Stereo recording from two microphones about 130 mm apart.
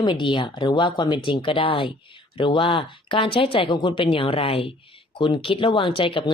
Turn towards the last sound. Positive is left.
turn(degrees=40)  # may be behind; listen again after turning